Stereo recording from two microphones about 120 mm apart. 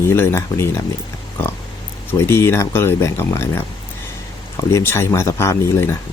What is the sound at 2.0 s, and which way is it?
Speech, 20° left (ahead or behind).